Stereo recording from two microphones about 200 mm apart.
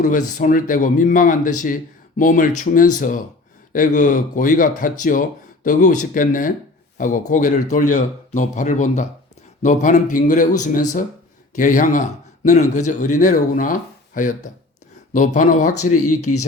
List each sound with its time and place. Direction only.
0.0 s speech: 40° left (ahead or behind)
16.0 s speech: 90° left